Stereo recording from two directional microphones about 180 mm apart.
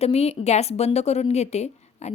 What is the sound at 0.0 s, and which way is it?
A woman's voice, 35° left (ahead or behind).